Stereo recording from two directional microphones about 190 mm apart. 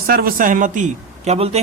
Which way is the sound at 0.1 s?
50° right (ahead or behind).